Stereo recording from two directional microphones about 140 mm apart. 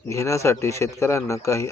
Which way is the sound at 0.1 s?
20° left (ahead or behind).